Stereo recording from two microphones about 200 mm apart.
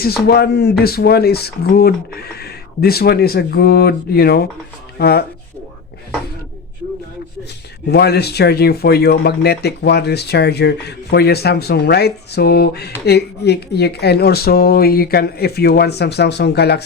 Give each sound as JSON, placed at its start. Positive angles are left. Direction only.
{"t": 0.3, "sound": "speech", "side_deg": 50}
{"t": 7.9, "sound": "speech", "side_deg": 55}